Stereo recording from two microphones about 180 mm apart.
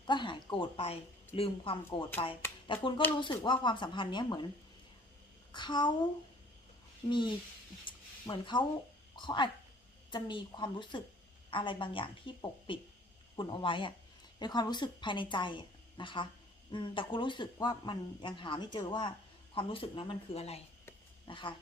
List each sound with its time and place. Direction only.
0.1 s a sound: 25° left (ahead or behind)
1.4 s speech: 30° left (ahead or behind)
5.5 s a child's voice: 25° left (ahead or behind)
7.1 s speech: 25° left (ahead or behind)
21.2 s dog: 25° left (ahead or behind)